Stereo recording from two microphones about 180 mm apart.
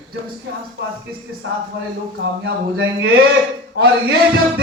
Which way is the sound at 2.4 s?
60° right (ahead or behind).